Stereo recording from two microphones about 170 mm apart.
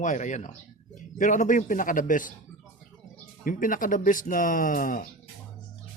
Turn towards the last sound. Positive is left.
turn(degrees=55)  # may be behind; listen again after turning